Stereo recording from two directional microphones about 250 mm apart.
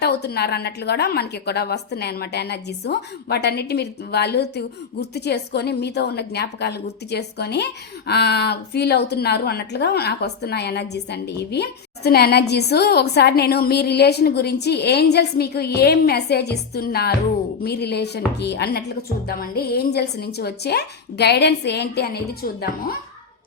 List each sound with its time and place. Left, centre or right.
0.0 s a woman's voice: left